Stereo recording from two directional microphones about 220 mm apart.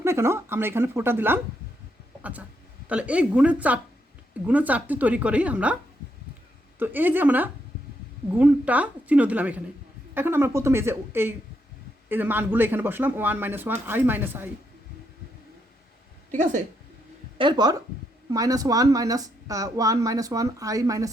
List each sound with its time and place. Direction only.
0.0 s speech: 10° right (ahead or behind)
2.8 s speech: 5° right (ahead or behind)
6.7 s speech: 10° right (ahead or behind)
16.3 s a woman's voice: 35° right (ahead or behind)
17.3 s speech: 20° right (ahead or behind)